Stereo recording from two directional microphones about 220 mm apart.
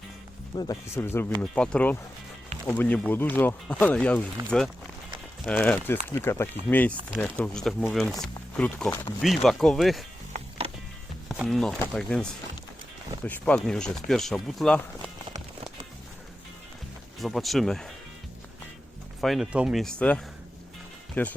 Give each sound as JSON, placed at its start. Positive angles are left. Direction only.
{"t": 0.5, "sound": "speech", "side_deg": 20}
{"t": 10.3, "sound": "music", "side_deg": -30}
{"t": 11.3, "sound": "speech", "side_deg": 0}
{"t": 17.2, "sound": "speech", "side_deg": 0}
{"t": 19.2, "sound": "speech", "side_deg": 0}